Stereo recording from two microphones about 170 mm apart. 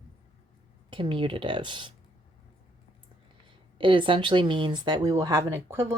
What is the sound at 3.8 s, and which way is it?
Speech, 30° right (ahead or behind).